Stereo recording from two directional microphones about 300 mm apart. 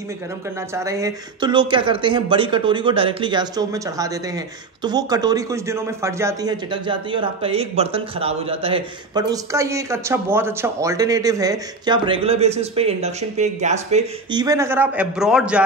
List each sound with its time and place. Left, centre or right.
0.7 s speech: centre